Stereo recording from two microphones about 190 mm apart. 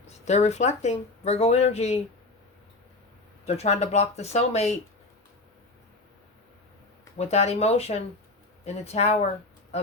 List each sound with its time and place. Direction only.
0.0 s speech: 35° left (ahead or behind)
3.4 s speech: 35° left (ahead or behind)
7.2 s speech: 35° left (ahead or behind)